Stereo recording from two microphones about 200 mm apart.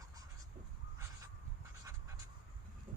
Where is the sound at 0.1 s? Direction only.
20° right (ahead or behind).